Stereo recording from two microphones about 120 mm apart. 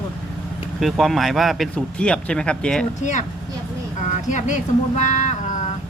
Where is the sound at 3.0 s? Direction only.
90° left.